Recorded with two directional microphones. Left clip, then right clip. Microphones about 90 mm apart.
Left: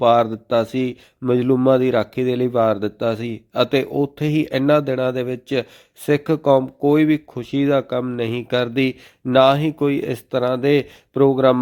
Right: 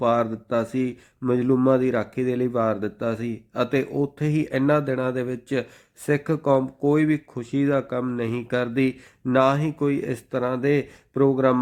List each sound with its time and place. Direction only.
0.0 s speech: 30° left (ahead or behind)